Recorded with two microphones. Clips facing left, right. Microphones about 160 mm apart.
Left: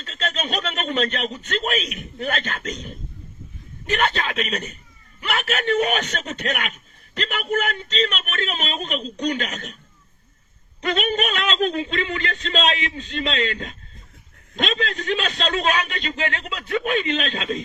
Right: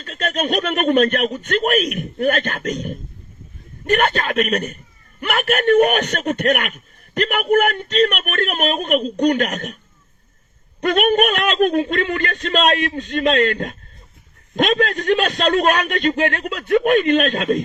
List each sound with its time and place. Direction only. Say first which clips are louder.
0.0 s a man's voice: right 6 dB; 60° right (ahead or behind)
10.8 s a man's voice: right 7 dB; 60° right (ahead or behind)